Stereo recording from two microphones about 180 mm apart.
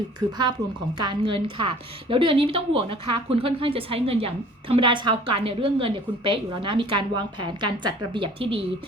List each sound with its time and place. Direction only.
0.2 s speech: 10° left (ahead or behind)
1.0 s a woman's voice: 25° right (ahead or behind)